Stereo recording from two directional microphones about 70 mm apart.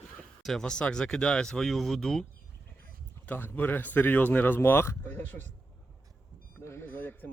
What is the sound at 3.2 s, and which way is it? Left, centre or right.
Speech, left.